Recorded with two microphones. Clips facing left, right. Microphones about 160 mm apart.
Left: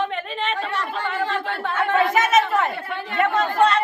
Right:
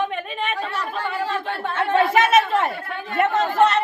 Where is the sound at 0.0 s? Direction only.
10° right (ahead or behind).